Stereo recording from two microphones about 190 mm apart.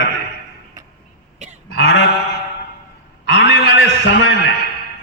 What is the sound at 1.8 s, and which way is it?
Sheep, 75° left (ahead or behind).